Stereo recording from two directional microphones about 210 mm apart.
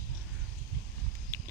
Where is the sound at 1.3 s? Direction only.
10° left (ahead or behind).